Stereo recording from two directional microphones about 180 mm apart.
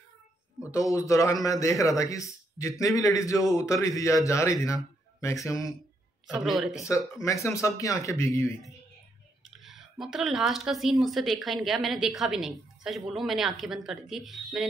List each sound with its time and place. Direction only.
0.6 s a man's voice: 15° left (ahead or behind)
6.2 s speech: centre (ahead or behind)
6.8 s a man's voice: 15° left (ahead or behind)
9.6 s speech: centre (ahead or behind)